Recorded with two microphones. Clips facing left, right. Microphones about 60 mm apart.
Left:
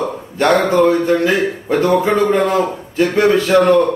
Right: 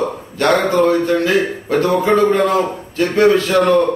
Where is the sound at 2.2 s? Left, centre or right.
Centre.